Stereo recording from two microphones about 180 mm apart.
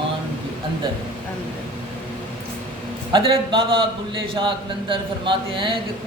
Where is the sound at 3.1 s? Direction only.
30° right (ahead or behind).